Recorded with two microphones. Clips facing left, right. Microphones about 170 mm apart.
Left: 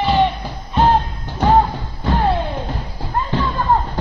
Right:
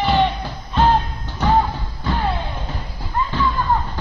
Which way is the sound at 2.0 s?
45° left (ahead or behind).